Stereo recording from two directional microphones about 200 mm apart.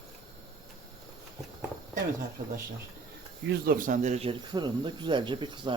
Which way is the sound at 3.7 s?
40° right (ahead or behind).